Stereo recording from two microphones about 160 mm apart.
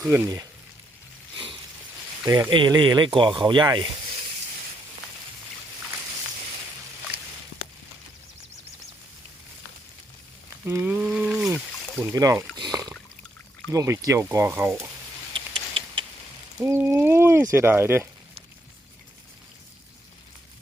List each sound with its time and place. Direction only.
0.1 s speech: 20° right (ahead or behind)
2.2 s speech: 20° right (ahead or behind)
10.6 s speech: 10° right (ahead or behind)
12.1 s speech: 20° right (ahead or behind)
12.5 s rowboat: 25° right (ahead or behind)
13.7 s speech: 20° right (ahead or behind)
15.3 s a sound: 35° right (ahead or behind)
16.6 s speech: 15° right (ahead or behind)